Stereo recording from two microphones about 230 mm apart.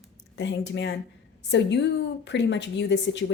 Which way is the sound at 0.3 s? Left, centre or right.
Left.